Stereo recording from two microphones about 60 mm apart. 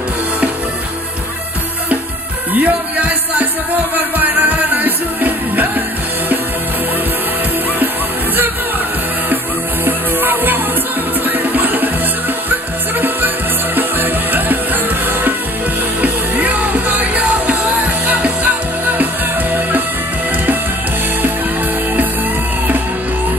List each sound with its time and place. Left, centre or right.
2.5 s music: right
9.8 s music: right
13.7 s music: right
16.0 s music: right